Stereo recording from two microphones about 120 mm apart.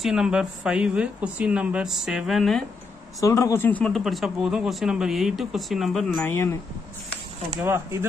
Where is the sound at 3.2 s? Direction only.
25° left (ahead or behind).